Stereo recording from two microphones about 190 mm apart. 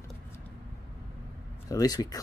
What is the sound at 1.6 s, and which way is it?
Speech, 20° left (ahead or behind).